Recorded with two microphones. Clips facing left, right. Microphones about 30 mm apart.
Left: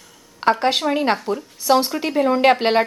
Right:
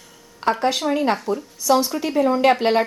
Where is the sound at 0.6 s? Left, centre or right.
Left.